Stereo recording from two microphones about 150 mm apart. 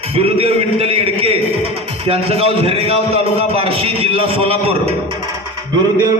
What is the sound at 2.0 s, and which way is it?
A man's voice, 40° right (ahead or behind).